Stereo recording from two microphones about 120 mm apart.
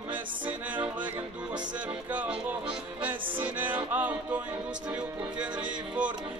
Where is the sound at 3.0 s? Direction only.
15° right (ahead or behind).